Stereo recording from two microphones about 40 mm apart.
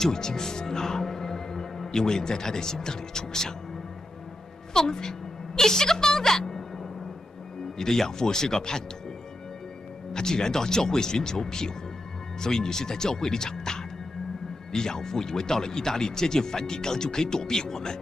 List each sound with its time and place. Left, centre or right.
0.0 s speech: centre
4.7 s a woman's voice: centre
10.1 s speech: centre